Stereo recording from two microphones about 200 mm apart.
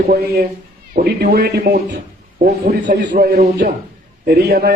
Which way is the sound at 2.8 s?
55° right (ahead or behind).